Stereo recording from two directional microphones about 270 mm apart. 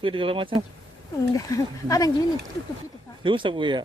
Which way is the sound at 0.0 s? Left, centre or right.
Centre.